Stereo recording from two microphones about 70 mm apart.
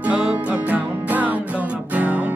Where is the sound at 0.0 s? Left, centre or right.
Centre.